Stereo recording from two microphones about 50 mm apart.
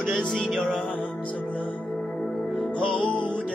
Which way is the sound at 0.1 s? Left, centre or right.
Centre.